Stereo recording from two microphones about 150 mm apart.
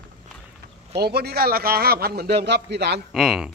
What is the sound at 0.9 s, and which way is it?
A man's voice, 90° right.